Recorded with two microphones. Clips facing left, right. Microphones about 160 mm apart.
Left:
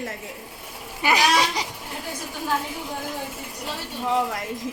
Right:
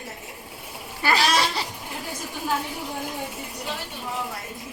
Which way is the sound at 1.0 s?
15° left (ahead or behind).